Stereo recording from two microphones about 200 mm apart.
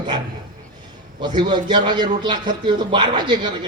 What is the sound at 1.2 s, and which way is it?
A man's voice, 20° right (ahead or behind).